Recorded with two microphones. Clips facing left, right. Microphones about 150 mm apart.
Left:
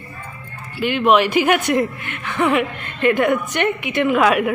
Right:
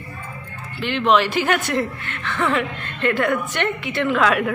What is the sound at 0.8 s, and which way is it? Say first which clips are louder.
A woman's voice: left 3 dB; 10° left (ahead or behind).